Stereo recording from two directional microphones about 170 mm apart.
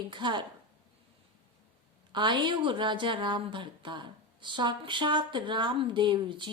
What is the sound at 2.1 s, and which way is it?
A woman's voice, 25° right (ahead or behind).